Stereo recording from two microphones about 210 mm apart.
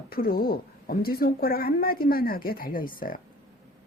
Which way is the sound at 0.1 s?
45° left (ahead or behind).